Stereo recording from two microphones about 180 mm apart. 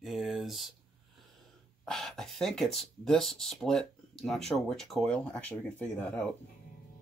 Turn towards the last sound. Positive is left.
turn(degrees=10)  # may be behind; listen again after turning